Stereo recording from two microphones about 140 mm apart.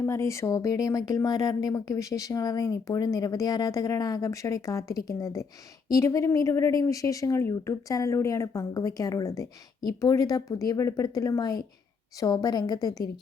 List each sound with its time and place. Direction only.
0.0 s speech: 20° left (ahead or behind)